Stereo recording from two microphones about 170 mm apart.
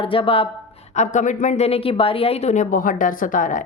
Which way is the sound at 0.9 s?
45° left (ahead or behind).